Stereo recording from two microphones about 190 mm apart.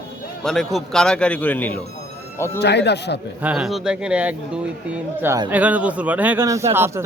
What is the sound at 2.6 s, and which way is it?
Speech, 65° left (ahead or behind).